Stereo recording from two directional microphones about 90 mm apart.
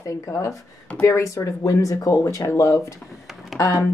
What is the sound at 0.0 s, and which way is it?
A woman's voice, 35° left (ahead or behind).